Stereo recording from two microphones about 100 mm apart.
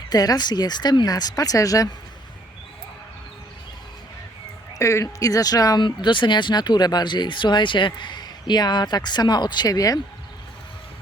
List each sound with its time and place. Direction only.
0.1 s speech: 40° left (ahead or behind)
4.8 s speech: 30° left (ahead or behind)
5.8 s speech: 55° left (ahead or behind)